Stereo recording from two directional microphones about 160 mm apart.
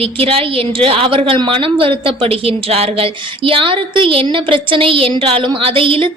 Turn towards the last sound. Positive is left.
turn(degrees=-35)  # may be behind; listen again after turning